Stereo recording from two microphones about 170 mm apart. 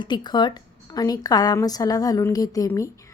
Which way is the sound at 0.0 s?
25° left (ahead or behind).